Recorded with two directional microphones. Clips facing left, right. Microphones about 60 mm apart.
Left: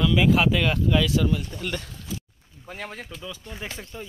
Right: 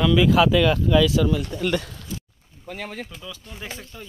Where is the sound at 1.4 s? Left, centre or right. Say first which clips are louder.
Right 7 dB; right.